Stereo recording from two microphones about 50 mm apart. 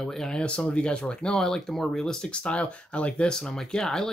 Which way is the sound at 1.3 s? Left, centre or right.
Centre.